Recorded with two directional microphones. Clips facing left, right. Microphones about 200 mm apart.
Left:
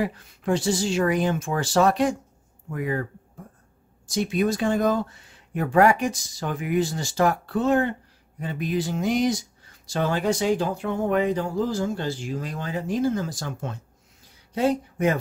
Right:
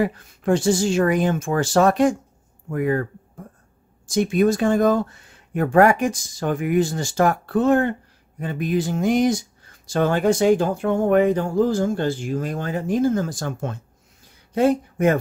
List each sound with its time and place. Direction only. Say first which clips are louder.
0.0 s speech: right 5 dB; 50° right (ahead or behind)
4.1 s speech: right 5 dB; 50° right (ahead or behind)